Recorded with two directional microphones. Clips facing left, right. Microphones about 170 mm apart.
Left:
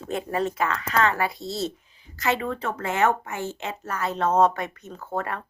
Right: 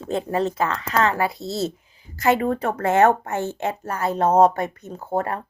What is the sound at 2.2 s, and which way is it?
Speech, 40° right (ahead or behind).